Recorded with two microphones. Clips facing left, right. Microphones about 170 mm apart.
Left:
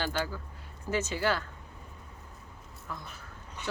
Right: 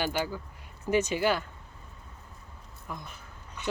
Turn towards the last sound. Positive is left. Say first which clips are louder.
# right 1 dB
turn(degrees=-15)  # may be behind; listen again after turning